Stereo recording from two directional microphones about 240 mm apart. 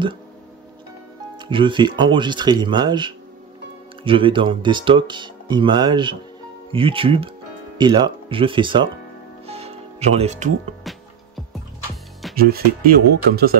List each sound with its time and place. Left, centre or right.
1.3 s speech: centre
9.5 s music: right
10.8 s music: centre
12.4 s speech: right